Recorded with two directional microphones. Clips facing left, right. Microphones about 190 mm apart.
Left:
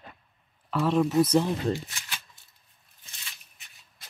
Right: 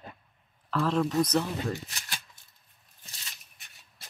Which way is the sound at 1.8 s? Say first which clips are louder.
Even; 40° right (ahead or behind).